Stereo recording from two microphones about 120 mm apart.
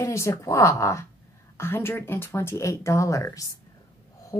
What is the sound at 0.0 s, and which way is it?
A woman's voice, 25° left (ahead or behind).